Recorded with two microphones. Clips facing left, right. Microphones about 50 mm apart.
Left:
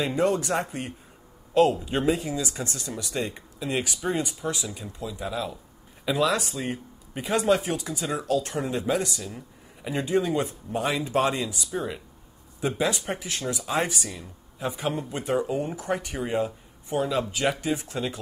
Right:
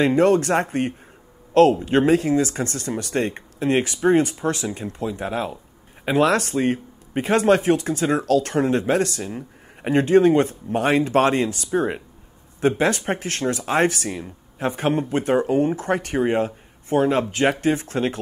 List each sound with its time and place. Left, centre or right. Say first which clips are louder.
0.0 s speech: right 8 dB; right
7.9 s speech: right 7 dB; right
9.3 s speech: right 8 dB; right
14.0 s speech: right 8 dB; right